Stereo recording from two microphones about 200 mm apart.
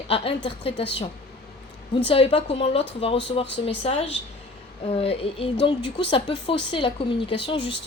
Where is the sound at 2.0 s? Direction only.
30° left (ahead or behind).